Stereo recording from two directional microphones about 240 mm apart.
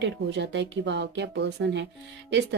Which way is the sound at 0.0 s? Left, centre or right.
Right.